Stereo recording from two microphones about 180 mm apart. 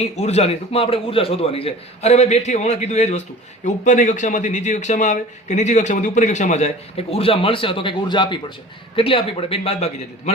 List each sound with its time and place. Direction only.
0.0 s a man's voice: 35° left (ahead or behind)